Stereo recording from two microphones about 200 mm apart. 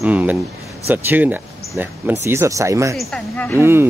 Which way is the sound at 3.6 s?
10° right (ahead or behind).